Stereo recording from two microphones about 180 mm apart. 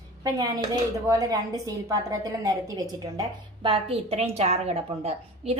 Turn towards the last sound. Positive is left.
turn(degrees=-35)  # may be behind; listen again after turning